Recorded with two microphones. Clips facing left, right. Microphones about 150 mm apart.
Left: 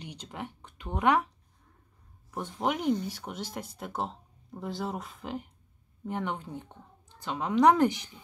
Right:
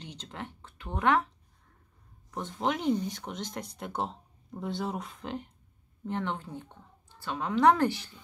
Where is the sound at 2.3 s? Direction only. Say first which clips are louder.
Even; 10° left (ahead or behind).